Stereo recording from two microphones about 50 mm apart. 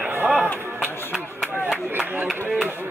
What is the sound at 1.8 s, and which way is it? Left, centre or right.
Speech, right.